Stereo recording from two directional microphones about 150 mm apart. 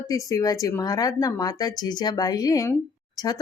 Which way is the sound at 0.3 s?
25° left (ahead or behind).